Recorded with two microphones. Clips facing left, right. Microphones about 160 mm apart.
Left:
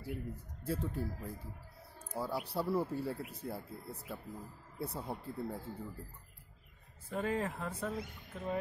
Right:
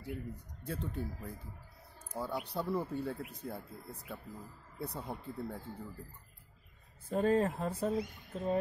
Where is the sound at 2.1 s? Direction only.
5° left (ahead or behind).